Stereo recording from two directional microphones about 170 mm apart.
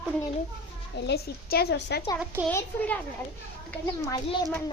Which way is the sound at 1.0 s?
75° left (ahead or behind).